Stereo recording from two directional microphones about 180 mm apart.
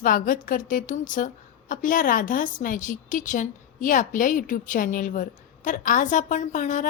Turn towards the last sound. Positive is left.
turn(degrees=45)  # may be behind; listen again after turning